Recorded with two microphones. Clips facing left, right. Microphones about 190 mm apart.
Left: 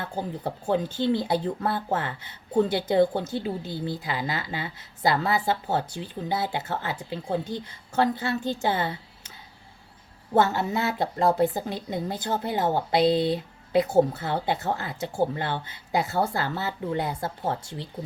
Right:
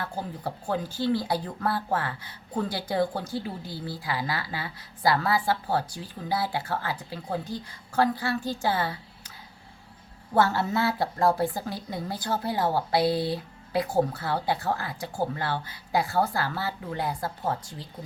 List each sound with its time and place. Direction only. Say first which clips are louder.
0.0 s speech: left 2 dB; 20° left (ahead or behind)
10.3 s speech: left 1 dB; 20° left (ahead or behind)